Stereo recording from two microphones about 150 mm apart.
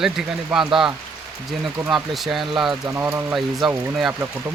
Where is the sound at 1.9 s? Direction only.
Centre (ahead or behind).